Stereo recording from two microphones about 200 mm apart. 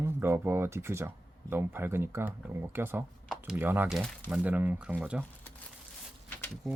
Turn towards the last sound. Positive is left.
turn(degrees=0)  # may be behind; listen again after turning